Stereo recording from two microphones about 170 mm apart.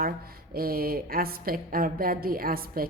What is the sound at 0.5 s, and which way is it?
A woman's voice, 60° right (ahead or behind).